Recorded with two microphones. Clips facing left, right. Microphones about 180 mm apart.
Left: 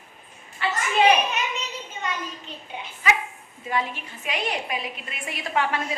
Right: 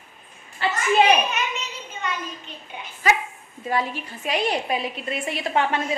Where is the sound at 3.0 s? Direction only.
40° right (ahead or behind).